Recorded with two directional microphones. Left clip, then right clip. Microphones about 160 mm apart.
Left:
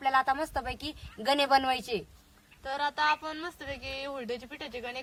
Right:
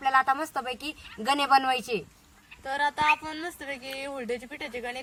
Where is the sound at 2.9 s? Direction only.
20° left (ahead or behind).